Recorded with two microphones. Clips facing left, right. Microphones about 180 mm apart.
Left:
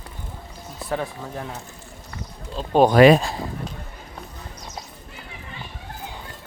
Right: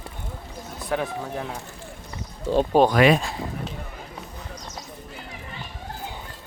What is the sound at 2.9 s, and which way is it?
Speech, 35° left (ahead or behind).